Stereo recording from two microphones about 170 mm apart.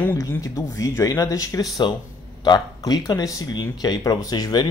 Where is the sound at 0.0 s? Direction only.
15° left (ahead or behind).